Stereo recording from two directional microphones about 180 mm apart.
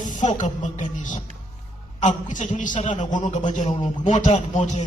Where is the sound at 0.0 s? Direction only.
45° left (ahead or behind).